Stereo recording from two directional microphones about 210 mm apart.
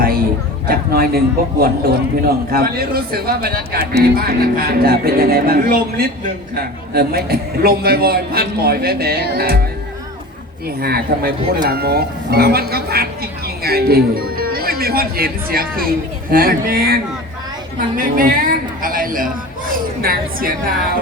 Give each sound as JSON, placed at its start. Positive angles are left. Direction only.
{"t": 0.7, "sound": "speech", "side_deg": -45}
{"t": 10.8, "sound": "speech", "side_deg": -45}
{"t": 17.7, "sound": "a sound", "side_deg": -40}
{"t": 19.7, "sound": "a woman's voice", "side_deg": -45}